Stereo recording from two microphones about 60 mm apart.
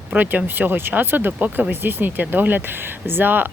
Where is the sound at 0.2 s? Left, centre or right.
Right.